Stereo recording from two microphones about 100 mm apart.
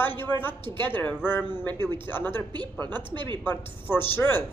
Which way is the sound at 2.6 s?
45° right (ahead or behind).